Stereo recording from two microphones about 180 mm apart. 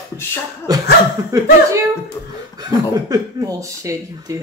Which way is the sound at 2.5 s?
20° right (ahead or behind).